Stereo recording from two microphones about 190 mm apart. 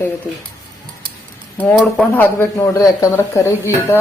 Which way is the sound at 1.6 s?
5° left (ahead or behind).